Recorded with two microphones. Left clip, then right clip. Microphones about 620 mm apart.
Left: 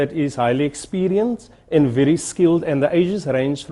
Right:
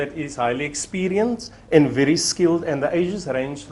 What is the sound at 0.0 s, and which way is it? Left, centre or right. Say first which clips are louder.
Speech: left 4 dB; left.